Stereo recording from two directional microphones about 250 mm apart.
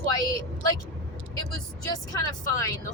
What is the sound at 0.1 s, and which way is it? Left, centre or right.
Vehicle, centre.